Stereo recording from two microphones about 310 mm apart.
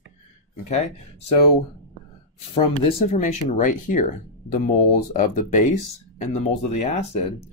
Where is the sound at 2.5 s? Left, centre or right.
Left.